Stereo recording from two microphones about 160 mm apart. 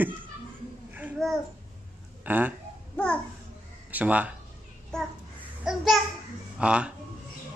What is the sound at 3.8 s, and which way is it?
Speech, 10° right (ahead or behind).